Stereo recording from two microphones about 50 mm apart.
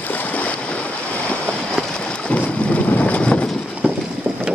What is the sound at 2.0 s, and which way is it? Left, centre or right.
Boat, left.